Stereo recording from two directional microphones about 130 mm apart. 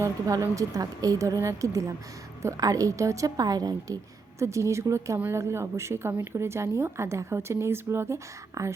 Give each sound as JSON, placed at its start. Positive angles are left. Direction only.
{"t": 0.0, "sound": "speech", "side_deg": -25}